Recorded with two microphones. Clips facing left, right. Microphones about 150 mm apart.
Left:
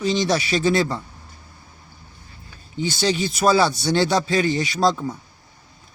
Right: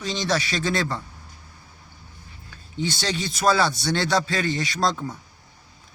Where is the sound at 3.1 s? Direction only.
10° left (ahead or behind).